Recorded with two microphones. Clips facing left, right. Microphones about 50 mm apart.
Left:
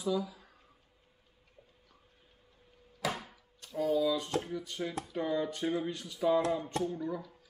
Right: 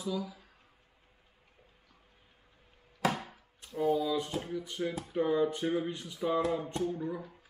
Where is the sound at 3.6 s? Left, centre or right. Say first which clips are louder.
Even; right.